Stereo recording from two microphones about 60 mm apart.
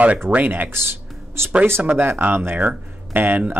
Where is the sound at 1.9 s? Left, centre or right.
Right.